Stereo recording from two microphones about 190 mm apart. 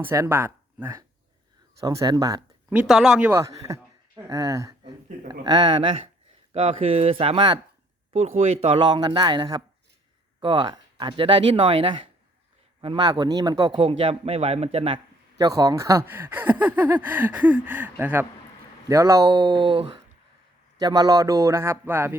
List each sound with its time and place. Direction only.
0.0 s speech: 15° right (ahead or behind)
2.6 s speech: 5° right (ahead or behind); by 7.6 s 25° right (ahead or behind)
8.1 s speech: 35° right (ahead or behind); by 22.1 s 10° right (ahead or behind)